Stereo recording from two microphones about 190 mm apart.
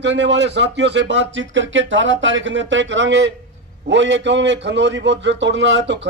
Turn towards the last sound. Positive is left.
turn(degrees=-70)  # may be behind; listen again after turning